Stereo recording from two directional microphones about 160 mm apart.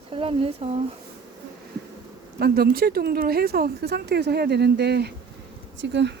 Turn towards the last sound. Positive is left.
turn(degrees=-90)